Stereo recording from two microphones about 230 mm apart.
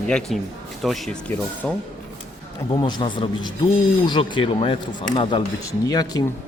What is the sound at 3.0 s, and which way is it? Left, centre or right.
Speech, centre.